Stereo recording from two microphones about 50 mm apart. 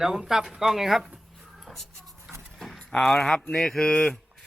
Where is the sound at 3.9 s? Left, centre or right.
Left.